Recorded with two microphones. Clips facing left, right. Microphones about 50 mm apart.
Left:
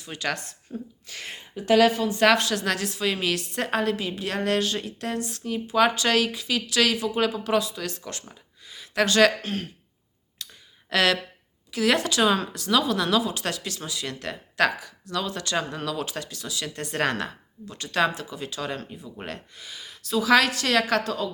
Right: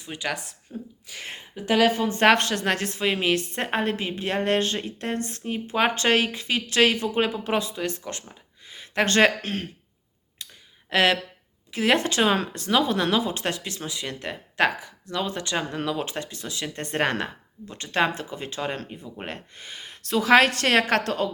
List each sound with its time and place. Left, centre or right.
0.0 s speech: centre
0.7 s a sound: centre
1.2 s a woman's voice: right
10.4 s a sound: right
10.8 s a woman's voice: right
19.5 s a woman's voice: right